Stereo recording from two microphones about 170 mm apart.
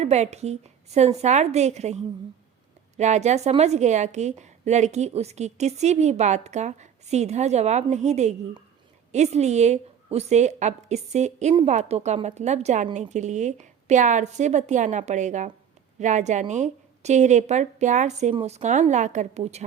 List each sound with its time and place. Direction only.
0.0 s a woman's voice: 40° right (ahead or behind)